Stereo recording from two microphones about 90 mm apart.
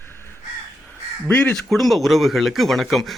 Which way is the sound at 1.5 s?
Centre (ahead or behind).